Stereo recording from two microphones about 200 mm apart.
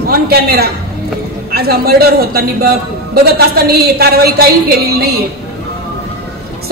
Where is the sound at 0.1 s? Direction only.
50° right (ahead or behind).